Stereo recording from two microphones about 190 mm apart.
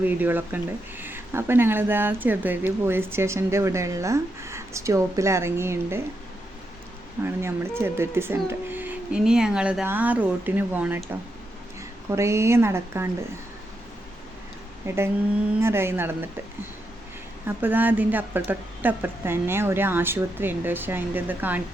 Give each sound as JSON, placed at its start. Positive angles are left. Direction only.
{"t": 0.0, "sound": "speech", "side_deg": -10}
{"t": 7.3, "sound": "speech", "side_deg": -15}
{"t": 14.8, "sound": "speech", "side_deg": -15}
{"t": 17.4, "sound": "speech", "side_deg": -10}